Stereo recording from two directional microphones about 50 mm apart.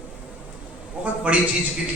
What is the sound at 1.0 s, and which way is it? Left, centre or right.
Speech, right.